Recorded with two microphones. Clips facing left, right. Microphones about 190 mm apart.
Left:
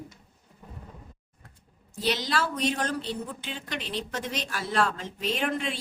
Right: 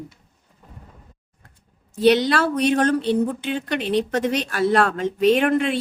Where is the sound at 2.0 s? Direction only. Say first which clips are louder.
Right 11 dB; 65° right (ahead or behind).